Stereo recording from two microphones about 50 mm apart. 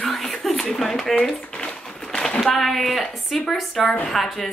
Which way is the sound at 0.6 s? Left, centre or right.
Centre.